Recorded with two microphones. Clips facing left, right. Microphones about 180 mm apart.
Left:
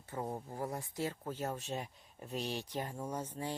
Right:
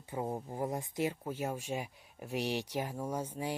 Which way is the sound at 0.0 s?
15° right (ahead or behind).